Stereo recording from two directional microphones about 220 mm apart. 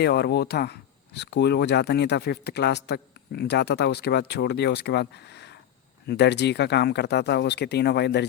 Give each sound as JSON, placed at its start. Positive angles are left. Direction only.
{"t": 0.0, "sound": "speech", "side_deg": 50}